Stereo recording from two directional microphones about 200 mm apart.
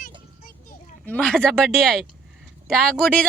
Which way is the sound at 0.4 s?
45° left (ahead or behind).